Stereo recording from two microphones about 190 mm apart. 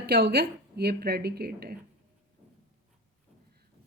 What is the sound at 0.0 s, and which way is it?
Speech, 55° right (ahead or behind).